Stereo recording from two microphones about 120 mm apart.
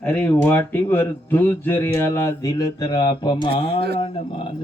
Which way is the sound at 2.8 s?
40° left (ahead or behind).